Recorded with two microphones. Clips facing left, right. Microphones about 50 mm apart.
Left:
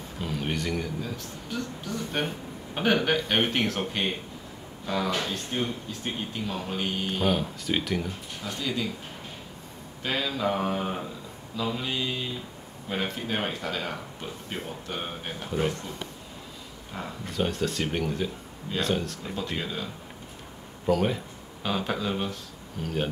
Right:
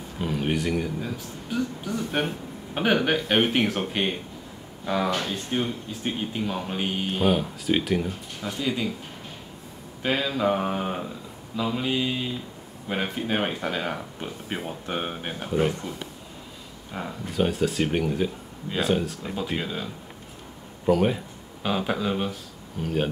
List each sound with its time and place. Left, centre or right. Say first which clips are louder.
0.2 s speech: right 4 dB; centre
10.0 s speech: right 4 dB; centre
16.9 s speech: right 3 dB; centre